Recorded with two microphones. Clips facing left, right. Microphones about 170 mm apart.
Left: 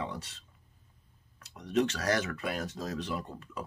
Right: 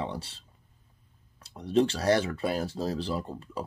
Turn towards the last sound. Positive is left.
turn(degrees=-30)  # may be behind; listen again after turning